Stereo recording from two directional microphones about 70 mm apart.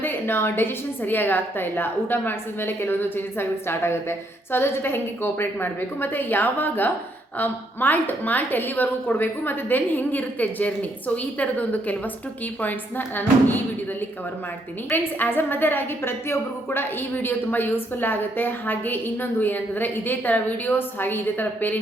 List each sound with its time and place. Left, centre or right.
0.0 s a woman's voice: left
14.8 s a woman's voice: left